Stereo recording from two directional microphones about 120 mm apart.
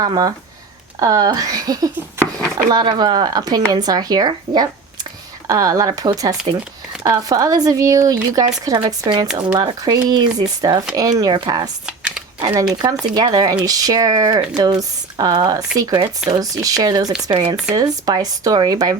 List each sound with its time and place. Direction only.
0.0 s speech: 35° right (ahead or behind)
6.5 s speech: 45° right (ahead or behind)
7.0 s speech: 30° right (ahead or behind)
9.2 s speech: 5° right (ahead or behind)
9.6 s speech: 35° right (ahead or behind)
11.9 s crumpling: 5° right (ahead or behind)
12.4 s speech: 35° right (ahead or behind)